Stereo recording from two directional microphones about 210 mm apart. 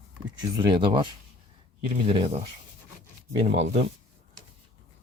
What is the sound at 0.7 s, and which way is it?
Speech, 20° right (ahead or behind).